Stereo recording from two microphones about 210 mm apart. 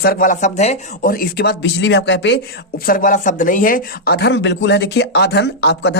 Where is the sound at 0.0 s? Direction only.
40° left (ahead or behind).